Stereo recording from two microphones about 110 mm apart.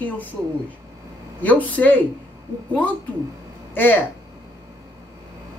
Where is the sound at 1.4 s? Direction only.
15° left (ahead or behind).